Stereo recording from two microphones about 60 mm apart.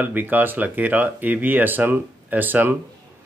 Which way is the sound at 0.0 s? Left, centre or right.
Right.